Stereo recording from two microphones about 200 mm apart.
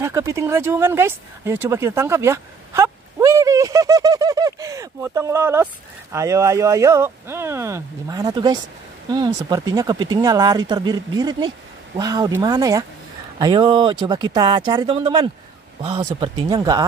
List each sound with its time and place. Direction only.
0.0 s speech: 15° right (ahead or behind)